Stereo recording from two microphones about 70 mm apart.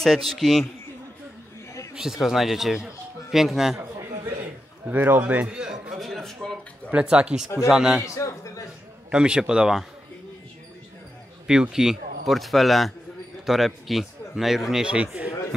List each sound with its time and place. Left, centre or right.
0.0 s a man's voice: centre
2.0 s speech: centre
4.8 s a man's voice: right
5.6 s a sound: centre
6.0 s a sound: centre
6.9 s speech: centre
8.0 s a sound: left
9.1 s speech: centre
11.7 s a man's voice: centre